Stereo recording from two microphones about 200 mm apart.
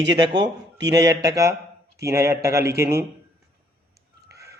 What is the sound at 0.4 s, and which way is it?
A man's voice, 20° right (ahead or behind).